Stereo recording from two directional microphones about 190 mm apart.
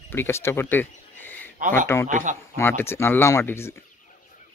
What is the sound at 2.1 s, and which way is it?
Speech, 40° right (ahead or behind).